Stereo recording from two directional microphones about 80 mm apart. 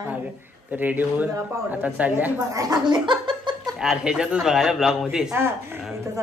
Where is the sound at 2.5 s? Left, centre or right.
Right.